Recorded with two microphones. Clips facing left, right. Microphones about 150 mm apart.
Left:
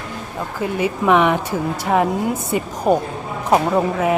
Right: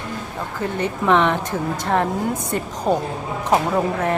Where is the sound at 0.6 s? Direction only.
10° left (ahead or behind).